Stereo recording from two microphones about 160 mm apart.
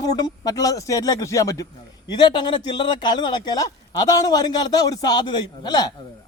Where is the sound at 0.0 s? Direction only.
25° left (ahead or behind).